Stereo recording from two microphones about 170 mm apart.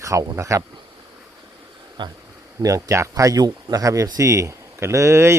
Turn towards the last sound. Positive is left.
turn(degrees=-15)  # may be behind; listen again after turning